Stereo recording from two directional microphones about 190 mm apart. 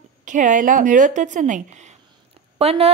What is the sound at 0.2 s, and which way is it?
A woman's voice, 40° right (ahead or behind).